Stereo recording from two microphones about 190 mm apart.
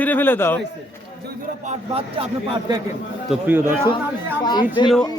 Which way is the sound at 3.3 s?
10° right (ahead or behind).